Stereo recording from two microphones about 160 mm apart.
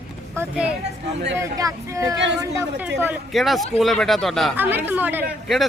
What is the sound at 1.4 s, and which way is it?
Speech, 20° right (ahead or behind).